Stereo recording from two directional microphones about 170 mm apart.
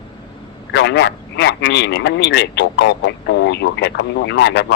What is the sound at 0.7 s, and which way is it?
Speech, 90° left.